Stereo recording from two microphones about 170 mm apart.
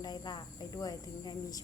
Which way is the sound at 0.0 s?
25° left (ahead or behind).